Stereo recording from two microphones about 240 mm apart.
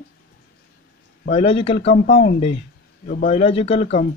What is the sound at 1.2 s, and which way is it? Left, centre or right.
Speech, left.